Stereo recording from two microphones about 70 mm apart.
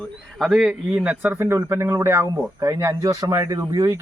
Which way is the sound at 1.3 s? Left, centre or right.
Right.